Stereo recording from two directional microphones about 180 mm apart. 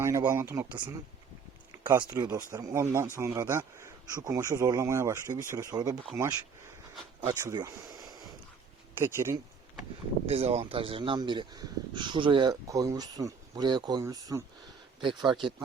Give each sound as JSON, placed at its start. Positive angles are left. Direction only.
{"t": 0.0, "sound": "speech", "side_deg": -15}
{"t": 1.8, "sound": "speech", "side_deg": -20}
{"t": 7.2, "sound": "speech", "side_deg": -20}
{"t": 10.2, "sound": "speech", "side_deg": -35}